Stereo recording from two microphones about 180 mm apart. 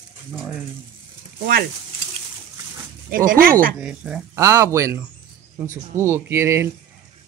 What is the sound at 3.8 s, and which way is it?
Speech, 5° right (ahead or behind).